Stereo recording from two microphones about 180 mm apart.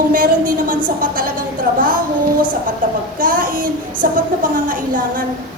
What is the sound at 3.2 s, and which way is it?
A woman's voice, 50° right (ahead or behind).